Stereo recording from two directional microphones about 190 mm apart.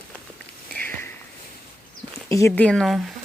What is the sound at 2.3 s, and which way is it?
Speech, 15° left (ahead or behind).